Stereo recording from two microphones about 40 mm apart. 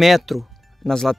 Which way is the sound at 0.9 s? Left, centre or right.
Centre.